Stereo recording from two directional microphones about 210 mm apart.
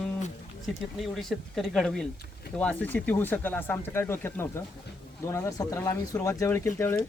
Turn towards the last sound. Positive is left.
turn(degrees=10)  # may be behind; listen again after turning